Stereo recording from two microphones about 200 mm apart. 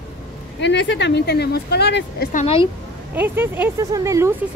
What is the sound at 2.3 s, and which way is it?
Speech, 30° left (ahead or behind).